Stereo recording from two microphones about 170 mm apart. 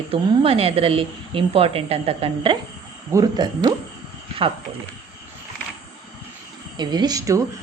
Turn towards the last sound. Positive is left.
turn(degrees=-20)  # may be behind; listen again after turning